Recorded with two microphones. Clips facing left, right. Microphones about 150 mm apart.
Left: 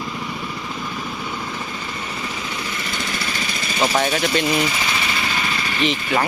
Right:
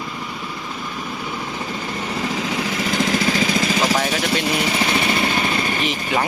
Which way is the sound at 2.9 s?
90° right.